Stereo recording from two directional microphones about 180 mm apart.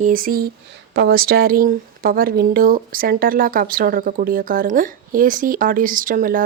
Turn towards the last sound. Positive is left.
turn(degrees=-50)  # may be behind; listen again after turning